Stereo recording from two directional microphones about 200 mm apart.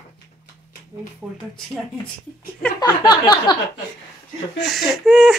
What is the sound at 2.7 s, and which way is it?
Speech, 20° left (ahead or behind).